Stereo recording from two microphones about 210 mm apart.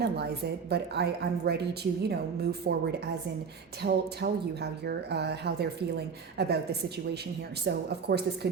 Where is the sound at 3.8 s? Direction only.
50° right (ahead or behind).